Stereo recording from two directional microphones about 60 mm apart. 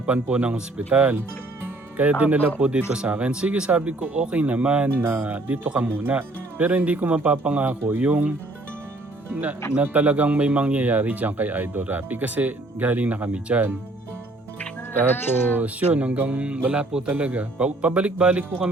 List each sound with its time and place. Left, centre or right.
0.0 s speech: right
5.0 s speech: right
15.5 s speech: right